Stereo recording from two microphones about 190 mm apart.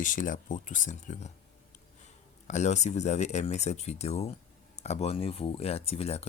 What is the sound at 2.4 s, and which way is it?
Speech, 40° left (ahead or behind).